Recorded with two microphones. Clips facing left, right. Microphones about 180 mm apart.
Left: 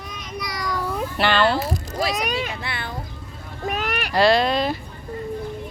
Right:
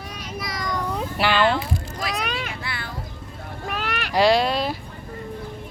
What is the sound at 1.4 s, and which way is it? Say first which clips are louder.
Speech: even; 40° left (ahead or behind).